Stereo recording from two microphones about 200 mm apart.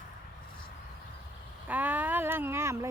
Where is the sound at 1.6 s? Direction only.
10° right (ahead or behind).